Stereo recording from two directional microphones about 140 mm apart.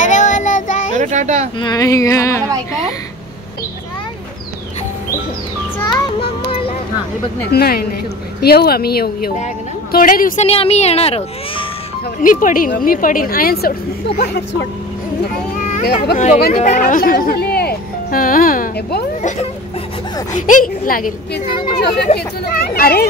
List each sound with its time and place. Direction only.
0.0 s child singing: 60° left (ahead or behind)
0.9 s a child's voice: 60° right (ahead or behind)
1.6 s speech: 25° left (ahead or behind)
7.5 s a woman's voice: 90° left
10.4 s a child's voice: 45° left (ahead or behind)
12.2 s a woman's voice: 70° left (ahead or behind); by 13.7 s 90° left
15.7 s speech: 60° left (ahead or behind); by 18.7 s 90° left
20.3 s speech: 70° left (ahead or behind)
22.1 s a child's voice: 50° left (ahead or behind)
22.5 s speech: 90° left